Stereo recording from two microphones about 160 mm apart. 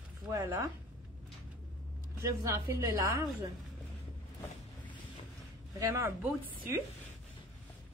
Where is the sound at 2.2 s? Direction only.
20° right (ahead or behind).